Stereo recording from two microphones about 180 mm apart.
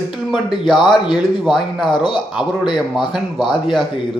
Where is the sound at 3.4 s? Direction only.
25° left (ahead or behind).